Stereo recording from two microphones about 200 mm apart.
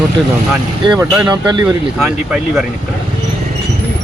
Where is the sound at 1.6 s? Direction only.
5° right (ahead or behind).